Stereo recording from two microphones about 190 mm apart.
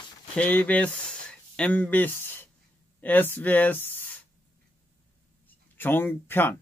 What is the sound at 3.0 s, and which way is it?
Speech, 10° left (ahead or behind).